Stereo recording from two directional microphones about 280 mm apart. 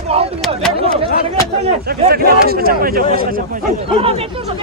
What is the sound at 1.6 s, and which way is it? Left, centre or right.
A man's voice, right.